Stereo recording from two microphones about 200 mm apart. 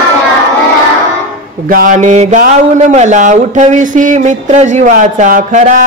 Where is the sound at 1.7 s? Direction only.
40° right (ahead or behind).